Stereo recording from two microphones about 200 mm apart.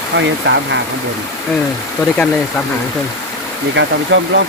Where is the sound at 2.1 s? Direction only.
5° left (ahead or behind).